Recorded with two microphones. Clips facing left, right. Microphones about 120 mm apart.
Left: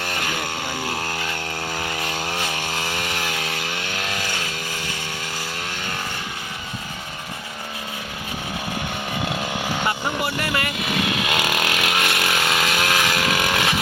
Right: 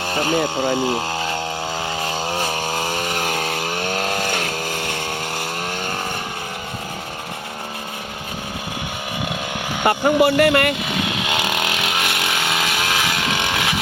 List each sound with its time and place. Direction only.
0.0 s a sound: 35° right (ahead or behind)
0.4 s speech: 25° right (ahead or behind)
3.2 s chainsaw: 45° right (ahead or behind)
4.3 s vehicle: 60° right (ahead or behind)
9.8 s speech: 55° right (ahead or behind)
11.2 s chainsaw: 25° right (ahead or behind)
11.9 s chainsaw: centre (ahead or behind)
12.3 s vehicle: centre (ahead or behind)
12.8 s chainsaw: 15° right (ahead or behind)
13.5 s vehicle: centre (ahead or behind)